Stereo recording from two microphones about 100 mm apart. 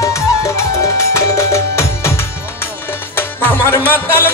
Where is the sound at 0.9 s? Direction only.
30° left (ahead or behind).